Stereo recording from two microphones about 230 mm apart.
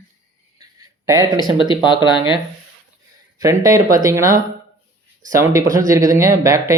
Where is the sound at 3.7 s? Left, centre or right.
Centre.